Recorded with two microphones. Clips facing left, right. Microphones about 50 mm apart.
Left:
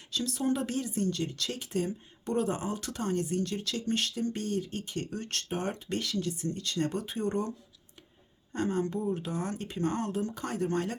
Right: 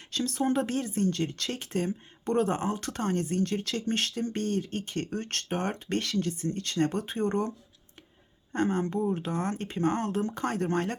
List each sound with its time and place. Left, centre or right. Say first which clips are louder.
0.1 s speech: right 3 dB; right
8.5 s speech: right 3 dB; right